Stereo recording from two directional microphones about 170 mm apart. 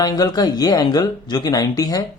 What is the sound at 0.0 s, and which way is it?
Speech, 20° left (ahead or behind).